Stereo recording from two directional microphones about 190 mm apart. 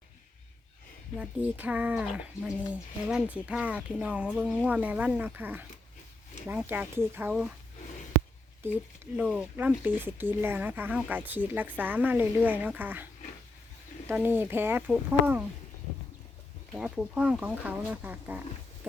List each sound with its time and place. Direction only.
1.2 s speech: 5° right (ahead or behind)
8.6 s speech: 10° right (ahead or behind)
14.1 s speech: 10° right (ahead or behind)
16.7 s speech: 5° right (ahead or behind)